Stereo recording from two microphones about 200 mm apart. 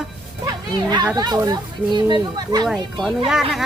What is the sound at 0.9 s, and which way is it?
Speech, 20° right (ahead or behind).